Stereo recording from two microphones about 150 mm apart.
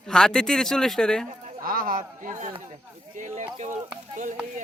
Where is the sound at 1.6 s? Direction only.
70° right (ahead or behind).